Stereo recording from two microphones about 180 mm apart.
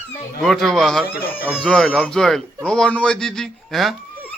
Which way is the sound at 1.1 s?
55° left (ahead or behind).